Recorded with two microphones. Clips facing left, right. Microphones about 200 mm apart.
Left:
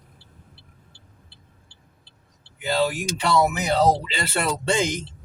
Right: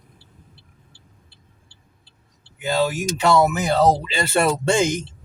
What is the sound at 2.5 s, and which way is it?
Speech, 45° right (ahead or behind).